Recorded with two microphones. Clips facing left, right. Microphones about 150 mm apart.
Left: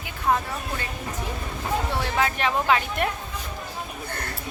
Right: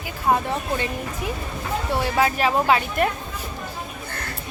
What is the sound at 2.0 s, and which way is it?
A woman's voice, 5° right (ahead or behind).